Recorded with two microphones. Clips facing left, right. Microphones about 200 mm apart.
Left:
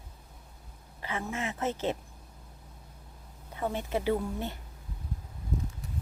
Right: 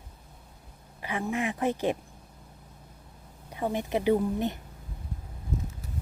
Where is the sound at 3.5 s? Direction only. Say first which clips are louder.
Right 3 dB; 15° right (ahead or behind).